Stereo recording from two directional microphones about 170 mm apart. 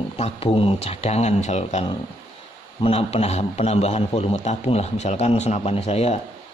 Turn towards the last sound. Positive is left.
turn(degrees=40)  # may be behind; listen again after turning